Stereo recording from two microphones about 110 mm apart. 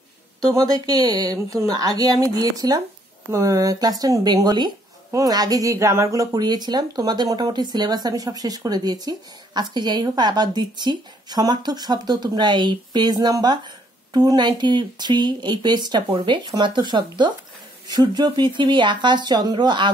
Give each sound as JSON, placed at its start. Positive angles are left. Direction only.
{"t": 0.6, "sound": "speech", "side_deg": -35}